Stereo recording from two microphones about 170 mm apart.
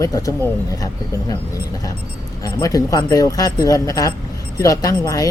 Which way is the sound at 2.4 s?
20° left (ahead or behind).